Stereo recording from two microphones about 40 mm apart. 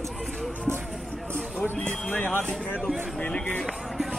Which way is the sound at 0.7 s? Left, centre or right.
Right.